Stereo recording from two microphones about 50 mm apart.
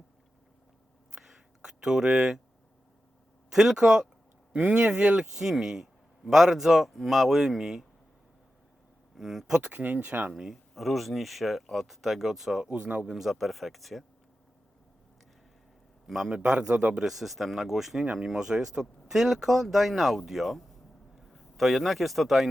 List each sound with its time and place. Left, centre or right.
1.1 s a sound: centre
3.5 s speech: centre
9.1 s speech: centre
9.7 s speech: right
10.3 s speech: centre
12.7 s a man's voice: right
13.1 s speech: centre
16.0 s speech: centre
16.4 s a man's voice: right
17.1 s speech: centre
18.0 s a man's voice: right; by 22.4 s centre